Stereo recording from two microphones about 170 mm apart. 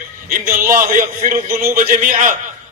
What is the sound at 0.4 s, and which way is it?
A man's voice, 55° right (ahead or behind).